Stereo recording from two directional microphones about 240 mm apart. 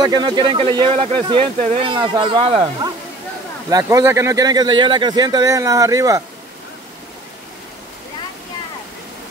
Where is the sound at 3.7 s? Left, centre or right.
Centre.